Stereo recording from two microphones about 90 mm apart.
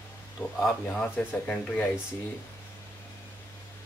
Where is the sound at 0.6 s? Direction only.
5° left (ahead or behind).